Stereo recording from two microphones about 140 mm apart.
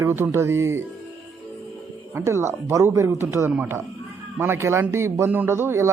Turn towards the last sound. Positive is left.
turn(degrees=-15)  # may be behind; listen again after turning